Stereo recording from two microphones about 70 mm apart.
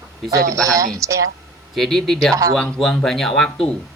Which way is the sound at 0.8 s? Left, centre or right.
Right.